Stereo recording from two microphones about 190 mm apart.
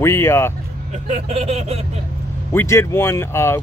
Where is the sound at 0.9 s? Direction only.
35° right (ahead or behind).